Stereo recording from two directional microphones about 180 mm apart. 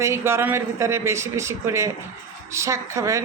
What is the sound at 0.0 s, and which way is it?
A man's voice, 15° right (ahead or behind).